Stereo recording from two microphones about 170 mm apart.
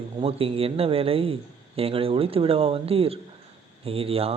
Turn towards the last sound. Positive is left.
turn(degrees=-35)  # may be behind; listen again after turning